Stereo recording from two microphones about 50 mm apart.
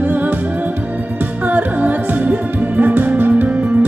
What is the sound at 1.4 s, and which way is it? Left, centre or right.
Music, right.